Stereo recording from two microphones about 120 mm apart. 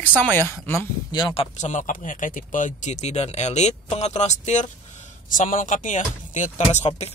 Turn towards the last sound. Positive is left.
turn(degrees=75)  # may be behind; listen again after turning